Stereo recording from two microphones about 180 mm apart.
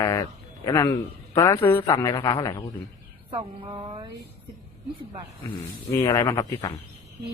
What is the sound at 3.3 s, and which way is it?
Speech, 30° right (ahead or behind).